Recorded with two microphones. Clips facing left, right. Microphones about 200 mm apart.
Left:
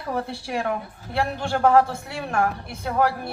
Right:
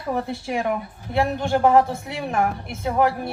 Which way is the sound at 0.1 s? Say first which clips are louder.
Right 2 dB; 20° right (ahead or behind).